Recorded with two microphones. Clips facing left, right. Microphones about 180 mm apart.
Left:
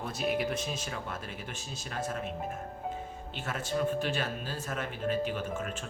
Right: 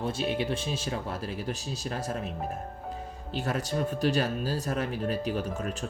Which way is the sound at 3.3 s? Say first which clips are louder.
Right 4 dB; 35° right (ahead or behind).